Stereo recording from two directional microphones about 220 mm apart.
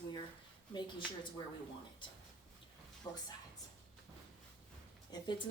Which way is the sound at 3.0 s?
15° left (ahead or behind).